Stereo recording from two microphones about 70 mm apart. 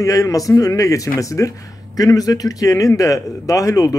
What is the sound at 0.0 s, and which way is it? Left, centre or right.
Speech, left.